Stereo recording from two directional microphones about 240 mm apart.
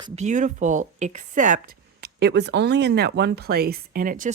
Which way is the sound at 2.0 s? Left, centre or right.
Right.